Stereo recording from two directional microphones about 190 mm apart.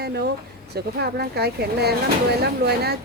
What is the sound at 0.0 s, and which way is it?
A child's voice, 55° right (ahead or behind).